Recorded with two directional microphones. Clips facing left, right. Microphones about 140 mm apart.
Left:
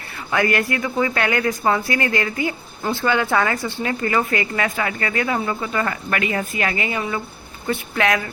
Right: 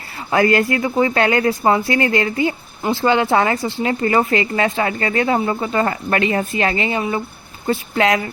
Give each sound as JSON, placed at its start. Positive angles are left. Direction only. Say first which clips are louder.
{"t": 0.3, "sound": "speech", "louder": "right 5 dB", "side_deg": -25}